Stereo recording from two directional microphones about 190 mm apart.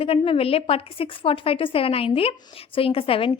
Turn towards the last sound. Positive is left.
turn(degrees=30)  # may be behind; listen again after turning